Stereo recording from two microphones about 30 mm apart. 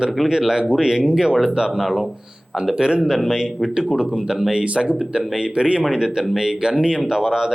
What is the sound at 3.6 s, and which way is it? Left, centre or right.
Speech, right.